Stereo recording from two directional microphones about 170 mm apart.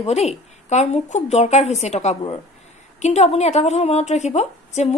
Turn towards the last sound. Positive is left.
turn(degrees=40)  # may be behind; listen again after turning